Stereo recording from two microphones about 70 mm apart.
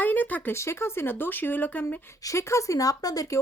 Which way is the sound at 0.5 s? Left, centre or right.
Left.